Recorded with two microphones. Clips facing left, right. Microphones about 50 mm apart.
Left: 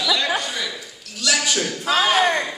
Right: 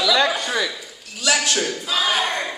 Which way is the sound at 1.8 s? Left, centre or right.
Left.